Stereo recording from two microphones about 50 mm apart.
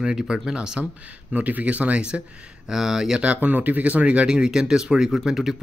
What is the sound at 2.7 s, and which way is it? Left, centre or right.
Speech, centre.